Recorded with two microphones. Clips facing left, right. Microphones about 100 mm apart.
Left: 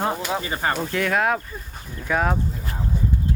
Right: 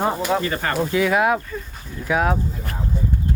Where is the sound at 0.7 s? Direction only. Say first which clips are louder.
Right 7 dB; 5° right (ahead or behind).